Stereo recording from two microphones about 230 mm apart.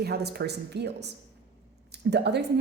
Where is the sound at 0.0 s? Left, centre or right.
Right.